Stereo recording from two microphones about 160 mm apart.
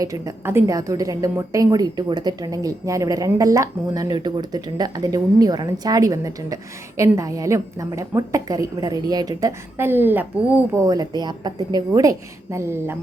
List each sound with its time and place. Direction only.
0.0 s a woman's voice: 20° right (ahead or behind)